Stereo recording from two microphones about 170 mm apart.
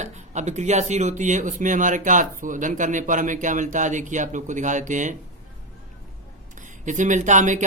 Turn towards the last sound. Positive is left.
turn(degrees=-45)  # may be behind; listen again after turning